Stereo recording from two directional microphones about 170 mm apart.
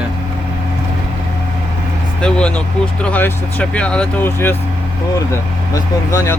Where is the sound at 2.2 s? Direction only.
5° left (ahead or behind).